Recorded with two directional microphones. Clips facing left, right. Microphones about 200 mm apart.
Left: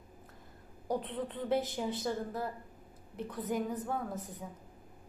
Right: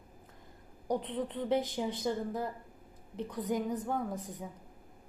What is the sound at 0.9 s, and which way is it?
A woman's voice, 15° right (ahead or behind).